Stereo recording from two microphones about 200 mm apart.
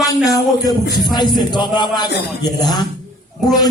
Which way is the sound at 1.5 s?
20° left (ahead or behind).